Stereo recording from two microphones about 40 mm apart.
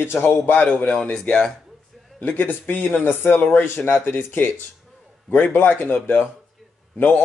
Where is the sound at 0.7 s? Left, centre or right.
Left.